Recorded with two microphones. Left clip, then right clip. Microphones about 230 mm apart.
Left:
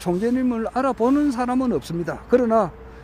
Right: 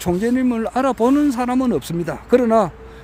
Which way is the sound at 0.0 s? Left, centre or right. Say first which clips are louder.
Right 3 dB; centre.